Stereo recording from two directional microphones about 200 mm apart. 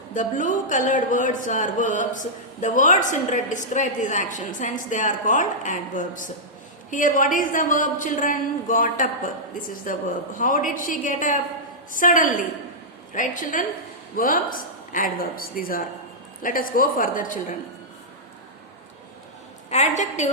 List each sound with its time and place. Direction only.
0.1 s a woman's voice: 40° left (ahead or behind)
20.0 s a woman's voice: 35° left (ahead or behind)